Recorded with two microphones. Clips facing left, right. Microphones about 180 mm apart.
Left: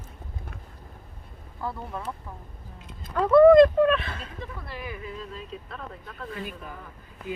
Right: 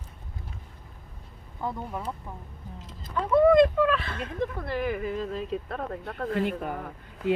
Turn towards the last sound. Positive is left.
turn(degrees=-65)  # may be behind; listen again after turning